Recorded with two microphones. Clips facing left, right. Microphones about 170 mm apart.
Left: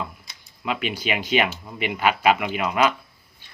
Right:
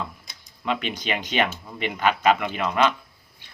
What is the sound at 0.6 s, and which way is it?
Speech, 5° left (ahead or behind).